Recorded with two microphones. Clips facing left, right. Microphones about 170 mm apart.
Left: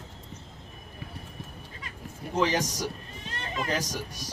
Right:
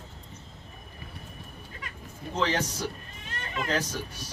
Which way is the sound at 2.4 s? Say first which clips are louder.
Left 2 dB; 15° left (ahead or behind).